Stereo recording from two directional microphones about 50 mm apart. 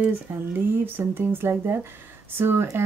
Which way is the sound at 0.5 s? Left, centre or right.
Right.